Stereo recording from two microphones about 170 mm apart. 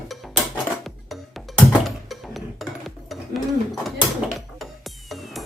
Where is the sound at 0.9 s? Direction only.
Centre (ahead or behind).